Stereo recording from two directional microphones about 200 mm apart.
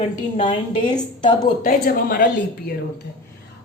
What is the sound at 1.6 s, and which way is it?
Speech, 45° left (ahead or behind).